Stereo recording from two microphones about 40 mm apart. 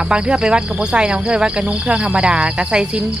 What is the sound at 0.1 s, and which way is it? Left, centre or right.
Speech, right.